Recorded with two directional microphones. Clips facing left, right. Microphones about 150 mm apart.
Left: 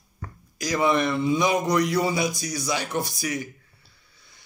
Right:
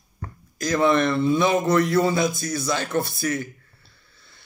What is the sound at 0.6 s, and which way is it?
Speech, 15° left (ahead or behind).